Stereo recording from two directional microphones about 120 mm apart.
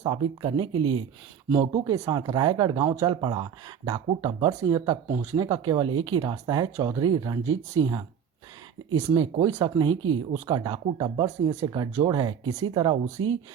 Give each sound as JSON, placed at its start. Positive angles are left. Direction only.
{"t": 0.1, "sound": "speech", "side_deg": -40}
{"t": 1.5, "sound": "speech", "side_deg": -30}
{"t": 3.2, "sound": "speech", "side_deg": -40}
{"t": 9.1, "sound": "speech", "side_deg": -30}